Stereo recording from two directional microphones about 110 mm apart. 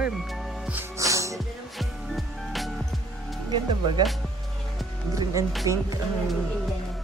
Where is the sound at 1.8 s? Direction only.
Centre (ahead or behind).